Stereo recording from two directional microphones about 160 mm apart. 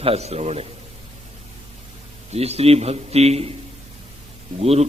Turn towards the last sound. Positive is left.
turn(degrees=-40)  # may be behind; listen again after turning